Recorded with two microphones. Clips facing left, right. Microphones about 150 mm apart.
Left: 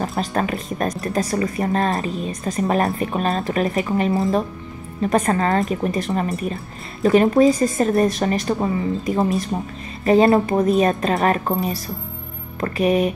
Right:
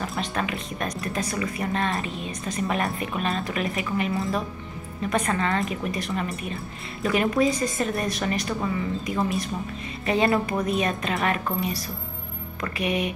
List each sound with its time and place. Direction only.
0.0 s a woman's voice: 45° left (ahead or behind)
12.5 s a woman's voice: 40° left (ahead or behind)